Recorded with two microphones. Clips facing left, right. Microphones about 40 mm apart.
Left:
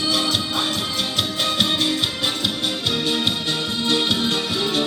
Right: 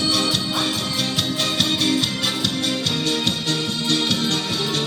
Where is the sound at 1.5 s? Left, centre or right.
Centre.